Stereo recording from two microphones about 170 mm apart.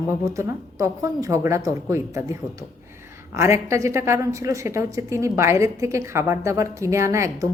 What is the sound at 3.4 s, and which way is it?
A woman's voice, 15° right (ahead or behind).